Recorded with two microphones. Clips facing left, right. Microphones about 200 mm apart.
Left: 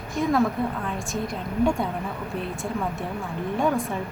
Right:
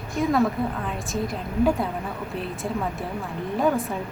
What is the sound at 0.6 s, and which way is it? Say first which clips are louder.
A woman's voice: even; centre (ahead or behind).